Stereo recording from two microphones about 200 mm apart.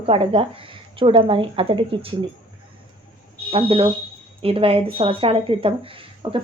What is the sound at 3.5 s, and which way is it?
A woman's voice, 25° right (ahead or behind).